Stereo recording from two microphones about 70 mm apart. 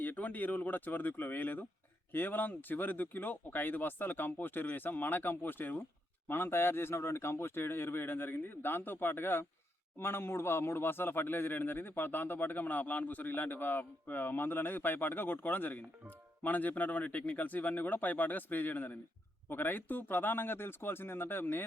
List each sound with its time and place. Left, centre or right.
0.0 s a man's voice: left